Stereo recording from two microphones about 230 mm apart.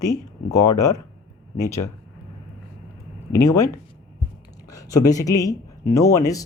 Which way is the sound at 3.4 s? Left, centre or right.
Centre.